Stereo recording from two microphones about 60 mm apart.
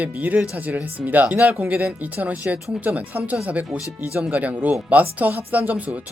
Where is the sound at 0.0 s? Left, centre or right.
Right.